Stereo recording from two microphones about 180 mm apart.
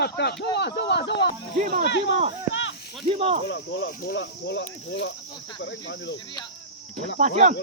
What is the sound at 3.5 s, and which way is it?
Speech, 75° left (ahead or behind).